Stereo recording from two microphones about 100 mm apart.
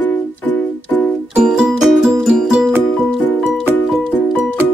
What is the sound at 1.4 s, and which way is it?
Music, 5° right (ahead or behind).